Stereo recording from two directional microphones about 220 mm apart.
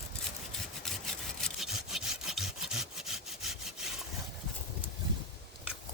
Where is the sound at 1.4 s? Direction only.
Centre (ahead or behind).